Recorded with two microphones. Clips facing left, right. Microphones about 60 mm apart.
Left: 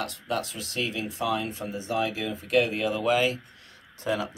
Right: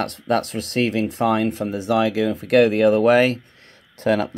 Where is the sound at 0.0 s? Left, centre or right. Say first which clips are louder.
Right 9 dB; right.